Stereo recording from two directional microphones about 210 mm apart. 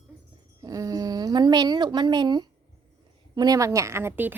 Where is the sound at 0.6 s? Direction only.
15° right (ahead or behind).